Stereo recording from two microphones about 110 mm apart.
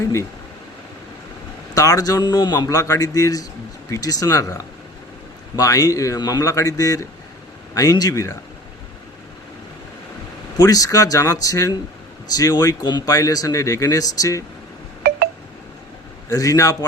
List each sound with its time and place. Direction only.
1.7 s speech: 35° left (ahead or behind)
10.6 s speech: 35° left (ahead or behind)
16.3 s speech: 30° left (ahead or behind)